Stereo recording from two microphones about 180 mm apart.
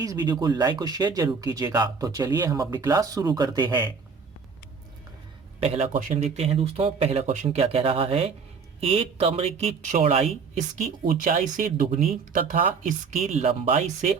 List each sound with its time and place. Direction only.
0.0 s speech: 20° right (ahead or behind)
5.5 s speech: 35° right (ahead or behind)